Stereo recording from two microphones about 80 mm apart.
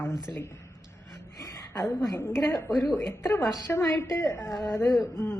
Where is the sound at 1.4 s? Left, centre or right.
Left.